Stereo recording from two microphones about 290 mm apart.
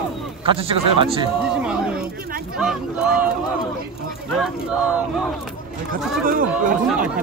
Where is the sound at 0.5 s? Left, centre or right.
Centre.